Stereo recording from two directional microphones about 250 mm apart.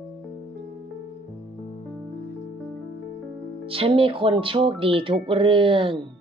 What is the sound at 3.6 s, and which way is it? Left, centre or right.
Speech, right.